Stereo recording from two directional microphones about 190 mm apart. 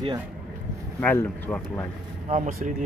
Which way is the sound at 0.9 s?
10° left (ahead or behind).